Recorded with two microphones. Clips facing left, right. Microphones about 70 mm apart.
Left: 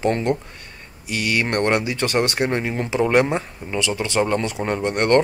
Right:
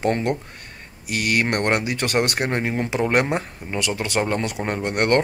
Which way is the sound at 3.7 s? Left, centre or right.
Right.